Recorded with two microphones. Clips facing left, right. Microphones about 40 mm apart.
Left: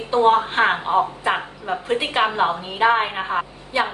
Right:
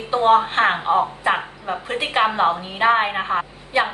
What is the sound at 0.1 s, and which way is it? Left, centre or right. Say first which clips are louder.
A woman's voice: right 1 dB; centre.